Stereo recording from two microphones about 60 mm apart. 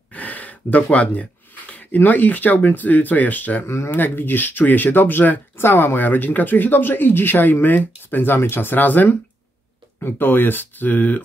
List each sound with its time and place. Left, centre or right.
0.1 s speech: left
3.6 s speech: left
3.9 s speech: left